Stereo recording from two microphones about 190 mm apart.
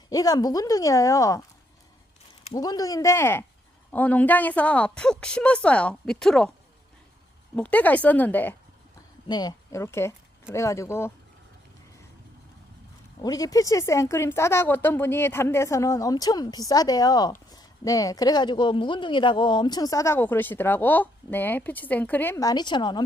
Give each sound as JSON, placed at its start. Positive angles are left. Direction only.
{"t": 0.1, "sound": "speech", "side_deg": 20}
{"t": 2.4, "sound": "speech", "side_deg": 20}
{"t": 7.5, "sound": "speech", "side_deg": 10}
{"t": 9.2, "sound": "speech", "side_deg": 20}
{"t": 13.2, "sound": "speech", "side_deg": 20}